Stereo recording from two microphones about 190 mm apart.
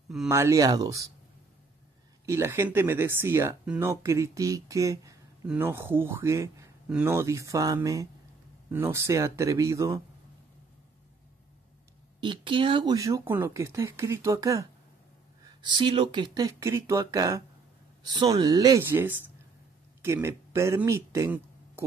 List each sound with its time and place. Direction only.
0.3 s speech: 15° right (ahead or behind)
2.2 s speech: 15° right (ahead or behind)
12.2 s speech: 25° right (ahead or behind)